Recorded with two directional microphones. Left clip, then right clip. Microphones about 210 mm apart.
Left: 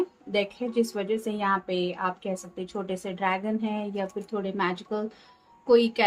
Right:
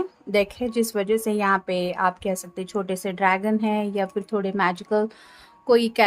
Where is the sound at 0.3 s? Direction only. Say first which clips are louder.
Right 8 dB; 55° right (ahead or behind).